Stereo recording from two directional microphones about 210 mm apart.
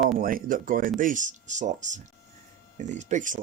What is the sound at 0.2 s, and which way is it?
Speech, 40° right (ahead or behind).